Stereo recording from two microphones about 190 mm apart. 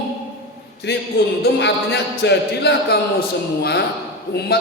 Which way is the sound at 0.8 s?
65° left (ahead or behind).